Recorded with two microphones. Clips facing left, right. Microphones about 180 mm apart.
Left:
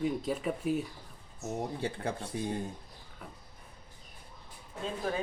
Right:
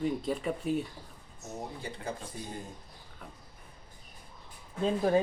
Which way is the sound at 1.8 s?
70° left (ahead or behind).